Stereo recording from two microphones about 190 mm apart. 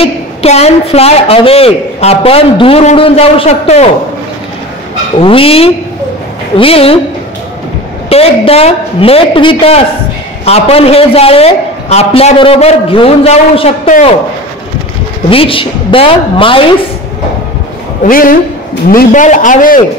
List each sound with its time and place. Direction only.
0.0 s a woman's voice: 35° left (ahead or behind)
5.2 s a woman's voice: 30° left (ahead or behind)
8.1 s a woman's voice: 30° left (ahead or behind)
15.2 s a woman's voice: 30° left (ahead or behind)
18.0 s a man's voice: 45° left (ahead or behind)